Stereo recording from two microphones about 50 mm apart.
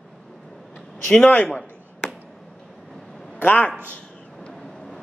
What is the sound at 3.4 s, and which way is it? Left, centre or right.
Speech, left.